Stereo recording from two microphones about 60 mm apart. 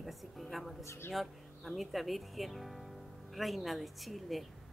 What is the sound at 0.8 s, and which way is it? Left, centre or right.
Speech, left.